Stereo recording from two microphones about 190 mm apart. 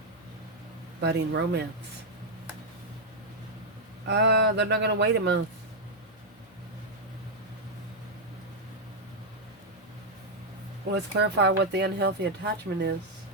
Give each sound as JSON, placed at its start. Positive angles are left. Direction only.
{"t": 1.0, "sound": "speech", "side_deg": -65}
{"t": 4.1, "sound": "speech", "side_deg": -60}
{"t": 10.9, "sound": "speech", "side_deg": -60}